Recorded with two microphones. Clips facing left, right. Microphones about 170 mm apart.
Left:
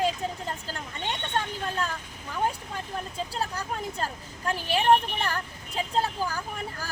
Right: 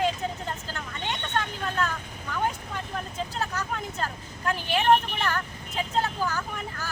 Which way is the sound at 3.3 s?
35° left (ahead or behind).